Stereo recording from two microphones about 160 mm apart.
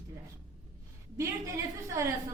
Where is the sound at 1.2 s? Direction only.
20° right (ahead or behind).